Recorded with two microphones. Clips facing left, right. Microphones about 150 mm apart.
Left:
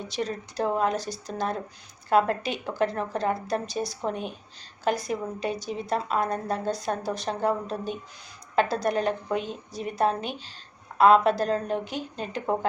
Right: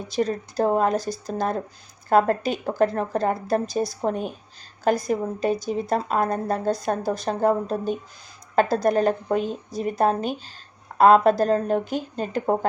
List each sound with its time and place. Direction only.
0.2 s a woman's voice: 45° right (ahead or behind)